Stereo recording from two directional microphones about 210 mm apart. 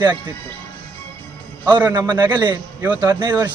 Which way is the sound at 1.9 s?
20° right (ahead or behind).